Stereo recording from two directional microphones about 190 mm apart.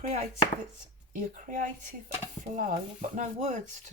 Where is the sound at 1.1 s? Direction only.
45° right (ahead or behind).